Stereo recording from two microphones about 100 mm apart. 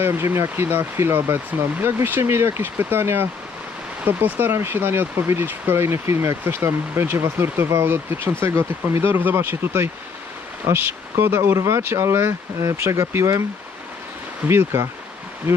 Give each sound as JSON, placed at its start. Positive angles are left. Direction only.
{"t": 0.0, "sound": "speech", "side_deg": -25}
{"t": 14.4, "sound": "speech", "side_deg": -25}